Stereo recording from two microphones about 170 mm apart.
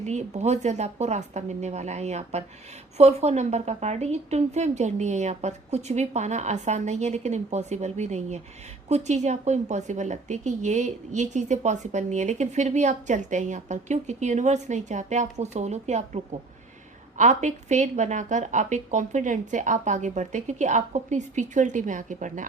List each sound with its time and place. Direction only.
0.0 s speech: 40° right (ahead or behind)